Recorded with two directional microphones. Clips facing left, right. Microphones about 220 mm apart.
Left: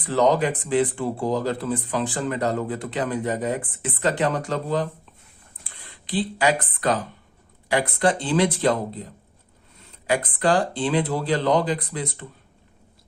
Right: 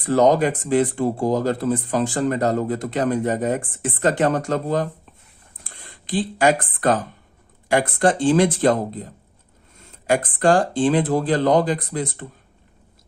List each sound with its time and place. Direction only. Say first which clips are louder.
0.0 s speech: right 4 dB; 45° right (ahead or behind)
10.1 s speech: right 4 dB; 45° right (ahead or behind)